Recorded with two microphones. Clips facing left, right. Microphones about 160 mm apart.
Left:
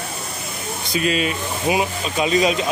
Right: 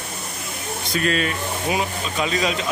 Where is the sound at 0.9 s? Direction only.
15° left (ahead or behind).